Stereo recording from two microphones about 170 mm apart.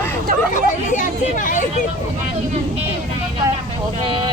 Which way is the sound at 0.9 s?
50° left (ahead or behind).